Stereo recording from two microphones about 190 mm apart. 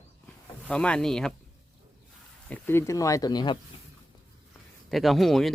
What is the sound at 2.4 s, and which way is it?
Speech, 10° left (ahead or behind).